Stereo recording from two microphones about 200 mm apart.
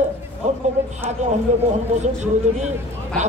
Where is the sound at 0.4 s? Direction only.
35° right (ahead or behind).